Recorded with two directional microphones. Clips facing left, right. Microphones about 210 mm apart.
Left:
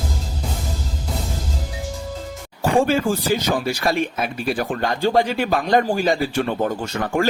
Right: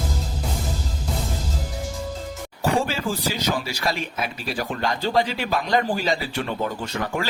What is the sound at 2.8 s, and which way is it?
Speech, 50° left (ahead or behind).